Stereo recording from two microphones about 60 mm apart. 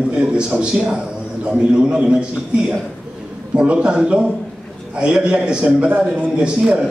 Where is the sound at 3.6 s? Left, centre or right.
Centre.